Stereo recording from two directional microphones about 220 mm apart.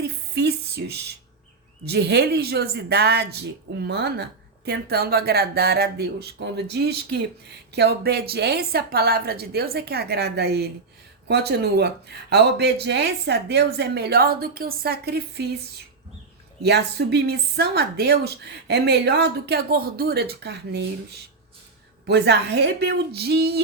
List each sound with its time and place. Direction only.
0.0 s a sound: 45° right (ahead or behind)
1.8 s speech: 50° right (ahead or behind)
16.6 s speech: 50° right (ahead or behind)
22.0 s speech: 50° right (ahead or behind)